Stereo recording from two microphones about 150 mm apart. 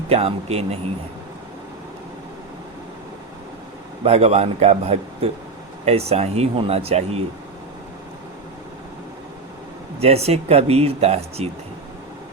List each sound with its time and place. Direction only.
0.1 s speech: 40° right (ahead or behind)
4.0 s speech: 45° right (ahead or behind)
10.0 s speech: 45° right (ahead or behind)